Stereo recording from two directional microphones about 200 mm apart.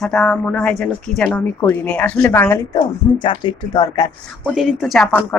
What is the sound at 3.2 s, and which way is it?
Speech, 25° left (ahead or behind).